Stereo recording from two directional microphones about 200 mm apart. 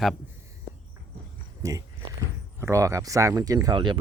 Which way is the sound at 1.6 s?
15° right (ahead or behind).